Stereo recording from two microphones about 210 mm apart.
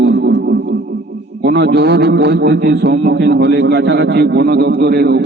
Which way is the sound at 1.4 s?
50° right (ahead or behind).